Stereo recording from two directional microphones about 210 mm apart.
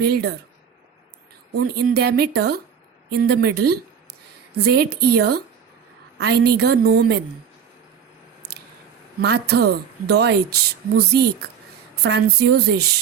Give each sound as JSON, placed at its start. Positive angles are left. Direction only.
{"t": 0.0, "sound": "speech", "side_deg": -50}
{"t": 1.5, "sound": "speech", "side_deg": -45}
{"t": 9.2, "sound": "speech", "side_deg": -50}